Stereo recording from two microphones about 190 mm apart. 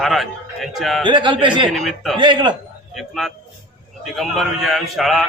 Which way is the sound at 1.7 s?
Centre (ahead or behind).